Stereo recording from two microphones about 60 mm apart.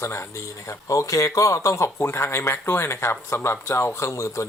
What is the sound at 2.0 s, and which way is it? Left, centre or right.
Speech, left.